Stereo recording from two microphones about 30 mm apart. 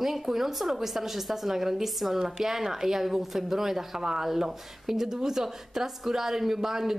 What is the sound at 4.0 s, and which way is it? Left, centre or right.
Speech, centre.